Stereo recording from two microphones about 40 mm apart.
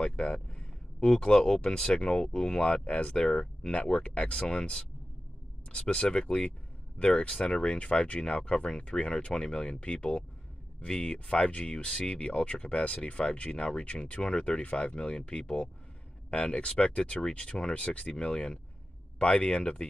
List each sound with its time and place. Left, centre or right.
0.0 s a sound: left
1.1 s speech: centre
2.7 s speech: left